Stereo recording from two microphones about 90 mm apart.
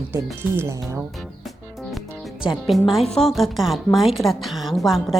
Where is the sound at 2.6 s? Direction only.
Centre (ahead or behind).